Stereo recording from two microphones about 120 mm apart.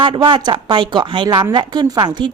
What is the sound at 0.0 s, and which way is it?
A woman's voice, 45° right (ahead or behind).